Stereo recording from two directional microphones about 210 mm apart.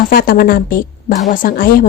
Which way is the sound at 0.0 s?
45° left (ahead or behind).